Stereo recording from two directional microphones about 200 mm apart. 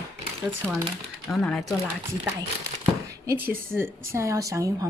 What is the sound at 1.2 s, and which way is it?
Speech, 5° left (ahead or behind).